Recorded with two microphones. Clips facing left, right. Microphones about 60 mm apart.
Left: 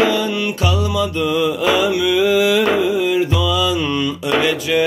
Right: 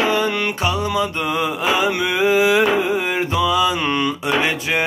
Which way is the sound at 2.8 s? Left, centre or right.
Right.